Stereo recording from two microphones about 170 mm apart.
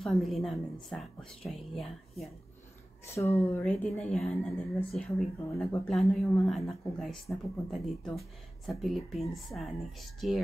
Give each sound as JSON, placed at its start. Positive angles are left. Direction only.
{"t": 0.0, "sound": "speech", "side_deg": 0}
{"t": 3.2, "sound": "speech", "side_deg": 15}
{"t": 3.6, "sound": "speech", "side_deg": 5}